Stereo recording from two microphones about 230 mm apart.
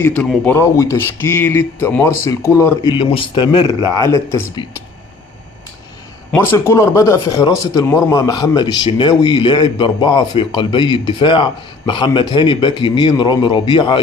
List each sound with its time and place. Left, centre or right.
0.0 s speech: centre
6.3 s a man's voice: centre